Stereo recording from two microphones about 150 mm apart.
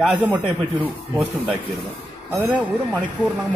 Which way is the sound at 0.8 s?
10° right (ahead or behind).